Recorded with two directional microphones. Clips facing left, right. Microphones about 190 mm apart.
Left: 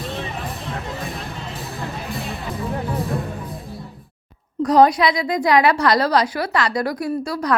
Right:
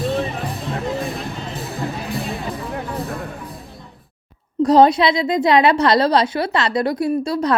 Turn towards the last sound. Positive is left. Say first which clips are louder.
# right 4 dB
turn(degrees=-25)  # may be behind; listen again after turning